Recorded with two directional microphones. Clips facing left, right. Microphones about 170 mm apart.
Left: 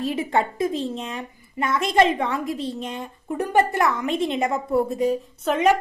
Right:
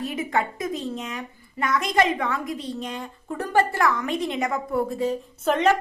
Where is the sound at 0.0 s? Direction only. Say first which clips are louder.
Left 3 dB; 30° left (ahead or behind).